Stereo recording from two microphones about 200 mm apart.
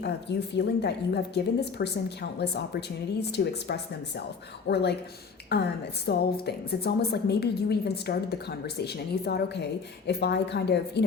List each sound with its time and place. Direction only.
0.0 s a woman's voice: 55° left (ahead or behind)